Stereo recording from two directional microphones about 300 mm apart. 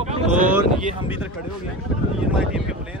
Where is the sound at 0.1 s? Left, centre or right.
Right.